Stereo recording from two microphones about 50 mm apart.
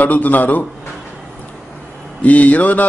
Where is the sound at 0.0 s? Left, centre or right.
Left.